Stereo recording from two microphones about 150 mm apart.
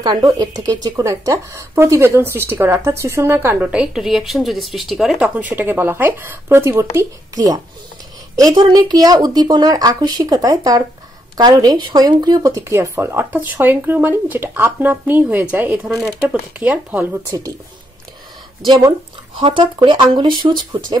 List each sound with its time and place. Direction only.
0.0 s speech: 25° right (ahead or behind)
17.3 s speech: 20° right (ahead or behind)
18.7 s speech: 30° right (ahead or behind)